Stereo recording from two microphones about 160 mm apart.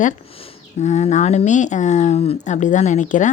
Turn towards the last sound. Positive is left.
turn(degrees=50)  # may be behind; listen again after turning